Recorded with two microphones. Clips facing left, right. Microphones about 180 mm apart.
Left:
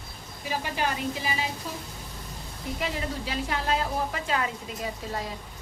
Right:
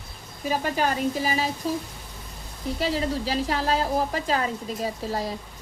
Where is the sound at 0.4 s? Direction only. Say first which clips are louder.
Right 5 dB; 45° right (ahead or behind).